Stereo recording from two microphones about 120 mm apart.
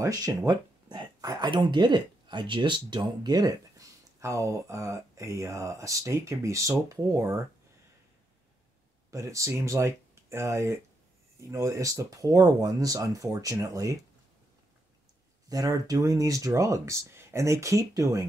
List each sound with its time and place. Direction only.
0.0 s speech: 30° right (ahead or behind)
9.1 s speech: 25° right (ahead or behind)
15.5 s speech: 30° right (ahead or behind)